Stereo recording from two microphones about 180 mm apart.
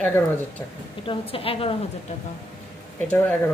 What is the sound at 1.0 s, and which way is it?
Speech, 30° left (ahead or behind).